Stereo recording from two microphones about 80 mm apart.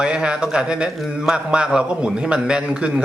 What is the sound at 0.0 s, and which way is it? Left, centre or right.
Speech, centre.